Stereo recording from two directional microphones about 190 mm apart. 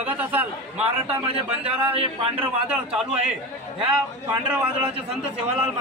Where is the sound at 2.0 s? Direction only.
30° right (ahead or behind).